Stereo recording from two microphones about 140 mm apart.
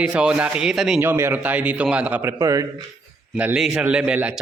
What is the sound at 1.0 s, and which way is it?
A man's voice, 15° right (ahead or behind).